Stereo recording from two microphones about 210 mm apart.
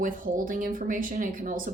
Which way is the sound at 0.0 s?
40° right (ahead or behind).